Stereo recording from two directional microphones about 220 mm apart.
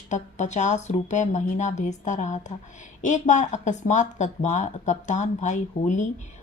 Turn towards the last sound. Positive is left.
turn(degrees=35)  # may be behind; listen again after turning